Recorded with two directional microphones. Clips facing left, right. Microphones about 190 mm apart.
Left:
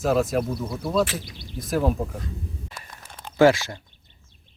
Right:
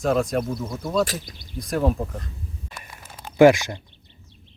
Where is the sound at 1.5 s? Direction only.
Centre (ahead or behind).